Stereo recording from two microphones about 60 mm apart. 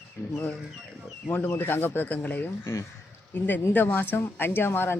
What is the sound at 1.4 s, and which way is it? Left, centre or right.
Speech, left.